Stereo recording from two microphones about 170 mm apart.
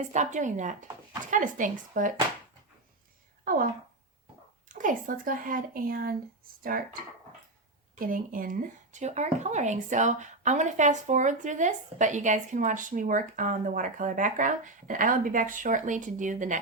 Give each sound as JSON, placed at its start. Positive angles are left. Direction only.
{"t": 0.1, "sound": "speech", "side_deg": -45}
{"t": 3.5, "sound": "a woman's voice", "side_deg": -50}
{"t": 4.7, "sound": "speech", "side_deg": -50}
{"t": 7.9, "sound": "speech", "side_deg": -55}